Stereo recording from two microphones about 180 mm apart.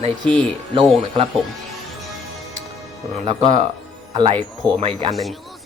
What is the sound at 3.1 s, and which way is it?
Speech, 40° right (ahead or behind).